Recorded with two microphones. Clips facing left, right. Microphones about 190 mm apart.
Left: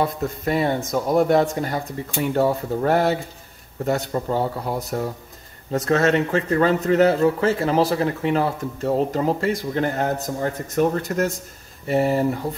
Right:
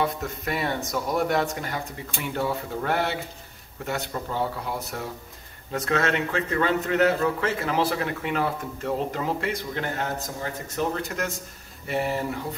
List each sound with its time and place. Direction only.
0.0 s a man's voice: 35° left (ahead or behind)